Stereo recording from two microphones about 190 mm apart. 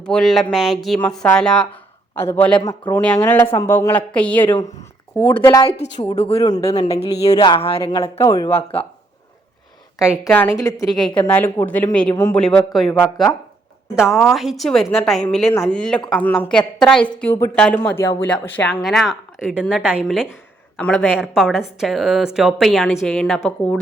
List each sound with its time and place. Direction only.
0.0 s a woman's voice: 5° left (ahead or behind)
6.1 s speech: 30° left (ahead or behind)
6.4 s speech: 20° left (ahead or behind)
7.0 s a man's voice: 35° left (ahead or behind); by 8.4 s 15° left (ahead or behind)
8.4 s speech: 30° left (ahead or behind)
10.0 s a woman's voice: 5° right (ahead or behind)
10.6 s a man's voice: 20° left (ahead or behind)
14.1 s a woman's voice: centre (ahead or behind)